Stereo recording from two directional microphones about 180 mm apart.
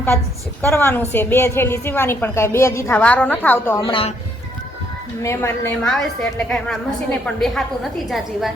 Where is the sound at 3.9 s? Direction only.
30° left (ahead or behind).